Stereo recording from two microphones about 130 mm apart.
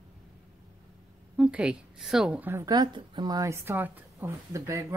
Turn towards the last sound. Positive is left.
turn(degrees=-25)  # may be behind; listen again after turning